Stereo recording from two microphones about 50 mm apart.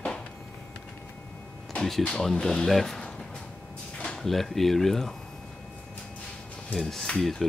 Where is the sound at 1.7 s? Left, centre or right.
Centre.